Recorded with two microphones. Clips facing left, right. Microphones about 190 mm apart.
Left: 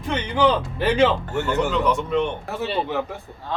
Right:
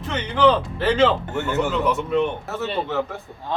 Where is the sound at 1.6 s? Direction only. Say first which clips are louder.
Right 1 dB; 5° right (ahead or behind).